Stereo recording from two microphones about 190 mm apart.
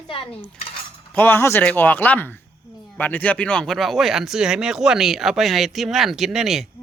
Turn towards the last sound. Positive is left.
turn(degrees=0)  # may be behind; listen again after turning